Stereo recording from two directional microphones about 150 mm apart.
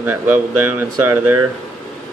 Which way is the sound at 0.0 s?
15° right (ahead or behind).